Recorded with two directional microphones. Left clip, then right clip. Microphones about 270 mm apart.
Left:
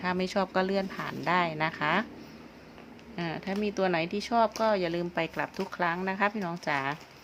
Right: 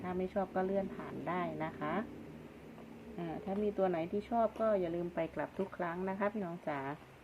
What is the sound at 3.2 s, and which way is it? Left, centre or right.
Speech, left.